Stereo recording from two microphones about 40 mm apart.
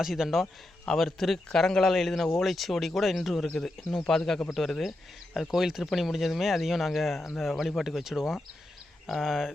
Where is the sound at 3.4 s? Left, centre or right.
Centre.